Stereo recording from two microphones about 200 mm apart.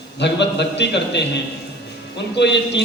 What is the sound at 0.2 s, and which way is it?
A man's voice, 60° left (ahead or behind).